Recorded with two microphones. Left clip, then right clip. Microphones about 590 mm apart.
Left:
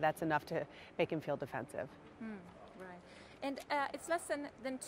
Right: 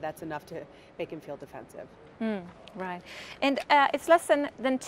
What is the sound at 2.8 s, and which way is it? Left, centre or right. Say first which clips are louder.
A woman's voice: right 15 dB; right.